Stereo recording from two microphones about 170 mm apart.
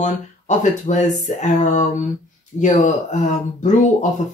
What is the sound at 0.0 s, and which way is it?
Speech, 45° left (ahead or behind).